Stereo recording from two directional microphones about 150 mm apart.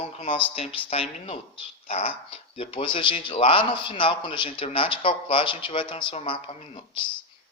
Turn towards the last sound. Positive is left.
turn(degrees=35)  # may be behind; listen again after turning